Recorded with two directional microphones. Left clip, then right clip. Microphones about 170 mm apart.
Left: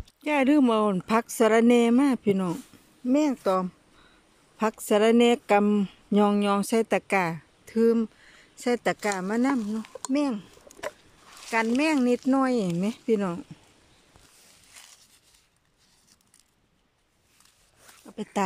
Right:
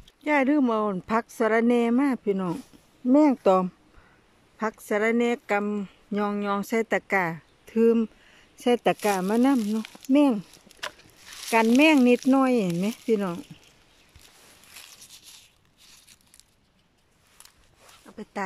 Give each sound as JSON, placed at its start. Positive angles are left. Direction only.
{"t": 0.2, "sound": "speech", "side_deg": 0}
{"t": 3.3, "sound": "speech", "side_deg": -15}
{"t": 4.6, "sound": "speech", "side_deg": 5}
{"t": 10.0, "sound": "speech", "side_deg": -20}
{"t": 11.8, "sound": "speech", "side_deg": -15}
{"t": 18.0, "sound": "zipper", "side_deg": 15}